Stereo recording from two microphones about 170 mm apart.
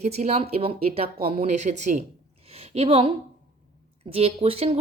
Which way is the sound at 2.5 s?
35° right (ahead or behind).